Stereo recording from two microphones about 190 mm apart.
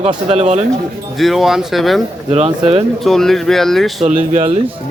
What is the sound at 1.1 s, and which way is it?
Speech, centre (ahead or behind).